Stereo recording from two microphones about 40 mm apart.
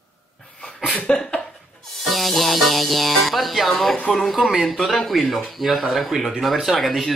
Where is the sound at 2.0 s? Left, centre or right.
Centre.